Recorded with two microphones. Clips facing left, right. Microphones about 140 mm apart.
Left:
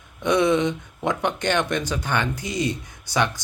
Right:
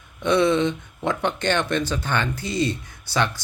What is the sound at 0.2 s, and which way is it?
Speech, 15° left (ahead or behind).